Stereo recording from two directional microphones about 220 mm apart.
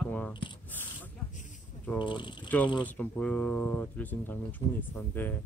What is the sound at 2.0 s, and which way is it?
Speech, 20° left (ahead or behind).